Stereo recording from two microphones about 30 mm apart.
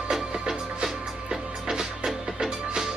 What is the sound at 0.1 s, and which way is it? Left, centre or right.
Music, centre.